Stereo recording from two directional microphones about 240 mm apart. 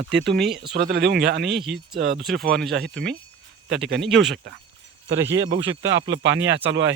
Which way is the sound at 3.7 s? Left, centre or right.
Right.